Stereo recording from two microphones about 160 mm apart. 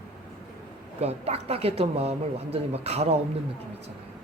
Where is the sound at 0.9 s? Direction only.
40° right (ahead or behind).